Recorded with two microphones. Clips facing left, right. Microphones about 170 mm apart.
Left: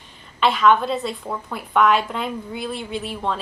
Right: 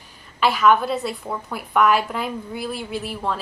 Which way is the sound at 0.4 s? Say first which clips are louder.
Even; 5° right (ahead or behind).